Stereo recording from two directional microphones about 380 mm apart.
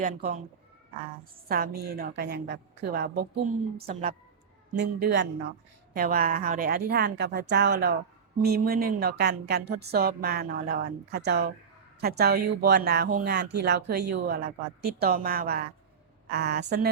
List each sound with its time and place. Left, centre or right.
0.0 s a woman's voice: right